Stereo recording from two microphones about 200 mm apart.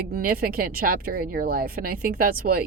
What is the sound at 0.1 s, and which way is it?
A woman's voice, 45° right (ahead or behind).